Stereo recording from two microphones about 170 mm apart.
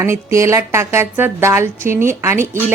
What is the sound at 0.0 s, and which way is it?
Speech, 15° right (ahead or behind).